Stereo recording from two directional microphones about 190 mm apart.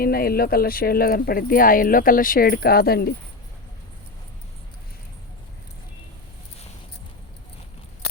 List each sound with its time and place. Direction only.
0.0 s speech: 50° left (ahead or behind)